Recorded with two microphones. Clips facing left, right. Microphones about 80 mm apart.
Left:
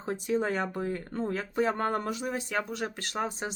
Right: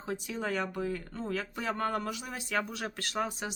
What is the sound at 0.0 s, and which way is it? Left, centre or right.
Speech, left.